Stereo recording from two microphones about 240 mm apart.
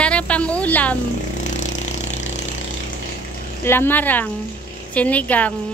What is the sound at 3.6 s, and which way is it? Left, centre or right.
A woman's voice, centre.